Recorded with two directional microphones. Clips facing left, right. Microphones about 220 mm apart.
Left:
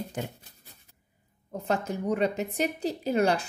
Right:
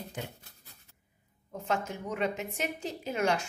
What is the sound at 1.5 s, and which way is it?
Speech, 35° left (ahead or behind).